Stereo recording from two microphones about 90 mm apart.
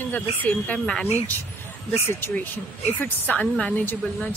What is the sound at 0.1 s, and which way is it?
Speech, 15° left (ahead or behind).